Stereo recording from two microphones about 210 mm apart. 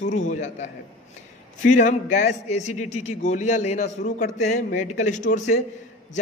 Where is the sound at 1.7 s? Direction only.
35° left (ahead or behind).